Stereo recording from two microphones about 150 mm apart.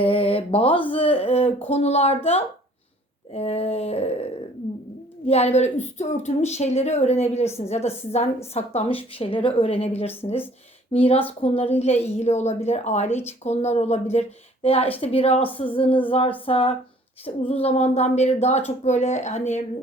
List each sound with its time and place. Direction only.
0.0 s a sound: 40° left (ahead or behind)
0.9 s speech: 40° left (ahead or behind)
5.3 s a woman's voice: 45° left (ahead or behind)